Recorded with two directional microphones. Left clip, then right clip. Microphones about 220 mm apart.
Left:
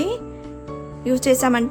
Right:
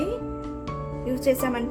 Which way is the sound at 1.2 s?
45° left (ahead or behind).